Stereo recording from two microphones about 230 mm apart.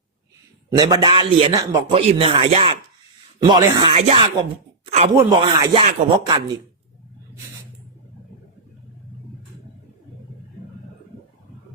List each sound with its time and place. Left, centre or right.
0.7 s a man's voice: centre
5.1 s speech: centre